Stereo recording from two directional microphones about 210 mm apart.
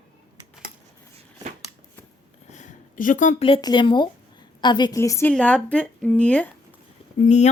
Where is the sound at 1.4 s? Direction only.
20° right (ahead or behind).